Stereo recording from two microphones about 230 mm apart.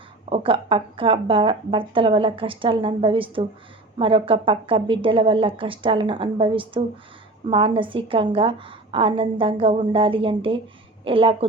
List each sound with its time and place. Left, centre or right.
0.3 s a woman's voice: right